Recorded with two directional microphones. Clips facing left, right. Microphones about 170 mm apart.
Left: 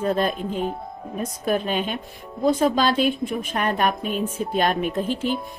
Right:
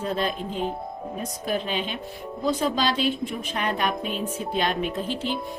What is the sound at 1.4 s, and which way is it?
Speech, 50° left (ahead or behind).